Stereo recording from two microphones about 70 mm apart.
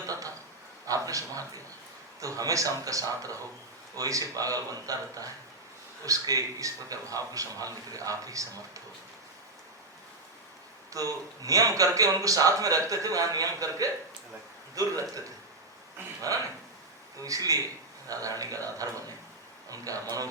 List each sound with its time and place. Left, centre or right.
0.0 s a sound: right
2.2 s a man's voice: right
10.9 s a man's voice: right
16.3 s a man's voice: right